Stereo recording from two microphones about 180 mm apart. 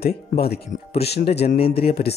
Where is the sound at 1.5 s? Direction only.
30° left (ahead or behind).